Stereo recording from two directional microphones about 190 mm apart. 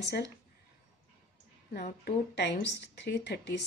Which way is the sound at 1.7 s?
55° left (ahead or behind).